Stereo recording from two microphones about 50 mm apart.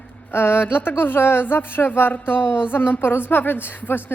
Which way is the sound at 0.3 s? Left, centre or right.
Left.